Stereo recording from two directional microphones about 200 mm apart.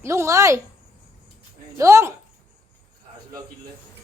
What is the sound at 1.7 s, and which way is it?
Speech, 15° right (ahead or behind).